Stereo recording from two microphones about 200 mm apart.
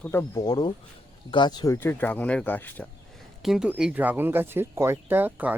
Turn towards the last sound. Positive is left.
turn(degrees=-10)  # may be behind; listen again after turning